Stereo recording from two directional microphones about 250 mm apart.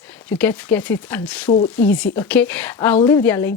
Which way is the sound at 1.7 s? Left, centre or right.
Centre.